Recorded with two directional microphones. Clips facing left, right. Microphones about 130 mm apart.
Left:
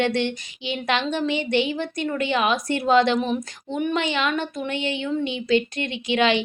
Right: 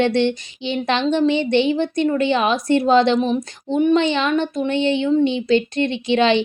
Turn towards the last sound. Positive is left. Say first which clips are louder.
# right 4 dB
turn(degrees=-30)  # may be behind; listen again after turning